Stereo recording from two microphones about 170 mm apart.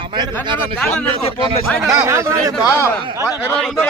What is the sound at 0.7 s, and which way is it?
Speech, 5° left (ahead or behind).